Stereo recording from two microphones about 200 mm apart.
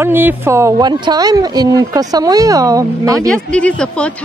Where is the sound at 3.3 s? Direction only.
5° left (ahead or behind).